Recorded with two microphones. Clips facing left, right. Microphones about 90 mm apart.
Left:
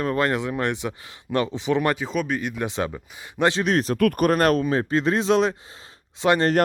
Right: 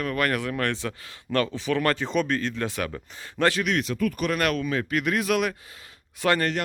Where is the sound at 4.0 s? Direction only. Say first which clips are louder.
Left 6 dB; 60° left (ahead or behind).